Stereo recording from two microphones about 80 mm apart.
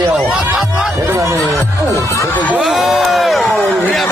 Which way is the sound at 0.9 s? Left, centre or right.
Right.